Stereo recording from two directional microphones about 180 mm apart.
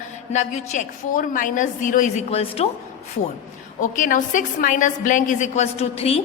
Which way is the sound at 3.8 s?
45° left (ahead or behind).